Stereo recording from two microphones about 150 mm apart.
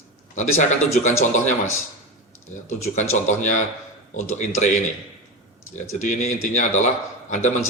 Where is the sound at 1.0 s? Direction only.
55° left (ahead or behind).